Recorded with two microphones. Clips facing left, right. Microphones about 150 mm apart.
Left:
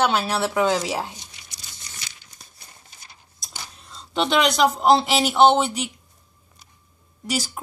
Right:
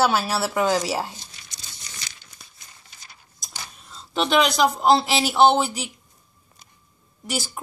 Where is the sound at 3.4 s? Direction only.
5° right (ahead or behind).